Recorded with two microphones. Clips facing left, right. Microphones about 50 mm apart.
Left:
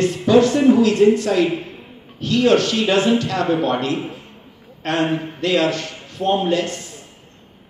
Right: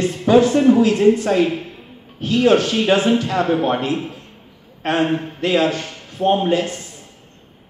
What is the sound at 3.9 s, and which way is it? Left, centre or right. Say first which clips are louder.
Speech: right 1 dB; centre.